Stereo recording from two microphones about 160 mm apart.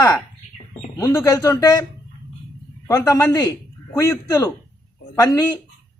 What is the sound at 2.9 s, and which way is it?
A man's voice, 15° left (ahead or behind).